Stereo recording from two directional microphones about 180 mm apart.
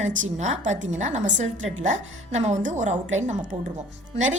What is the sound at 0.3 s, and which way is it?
A woman's voice, 40° right (ahead or behind).